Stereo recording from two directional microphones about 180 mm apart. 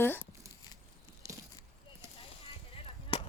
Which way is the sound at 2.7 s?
30° left (ahead or behind).